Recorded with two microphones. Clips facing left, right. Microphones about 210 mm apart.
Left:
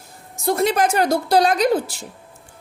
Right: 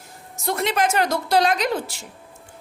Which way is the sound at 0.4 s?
35° left (ahead or behind).